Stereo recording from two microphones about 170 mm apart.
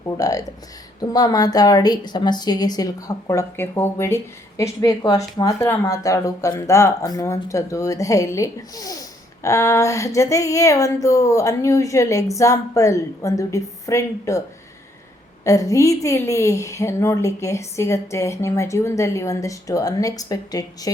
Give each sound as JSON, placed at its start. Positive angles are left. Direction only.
{"t": 0.2, "sound": "a woman's voice", "side_deg": 20}
{"t": 15.4, "sound": "a woman's voice", "side_deg": 20}